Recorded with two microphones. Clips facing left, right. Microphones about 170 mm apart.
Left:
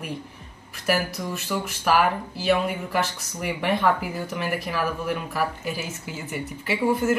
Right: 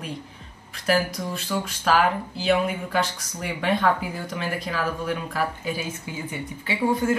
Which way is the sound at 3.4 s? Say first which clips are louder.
Even; 10° left (ahead or behind).